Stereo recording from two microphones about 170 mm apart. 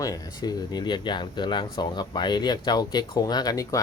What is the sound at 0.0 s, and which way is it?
Speech, 20° left (ahead or behind).